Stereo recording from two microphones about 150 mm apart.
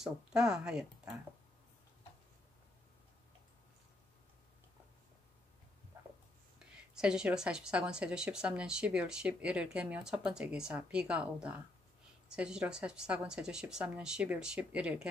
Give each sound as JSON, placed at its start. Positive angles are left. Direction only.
{"t": 0.0, "sound": "speech", "side_deg": -5}
{"t": 6.6, "sound": "a sound", "side_deg": -5}
{"t": 7.0, "sound": "speech", "side_deg": -5}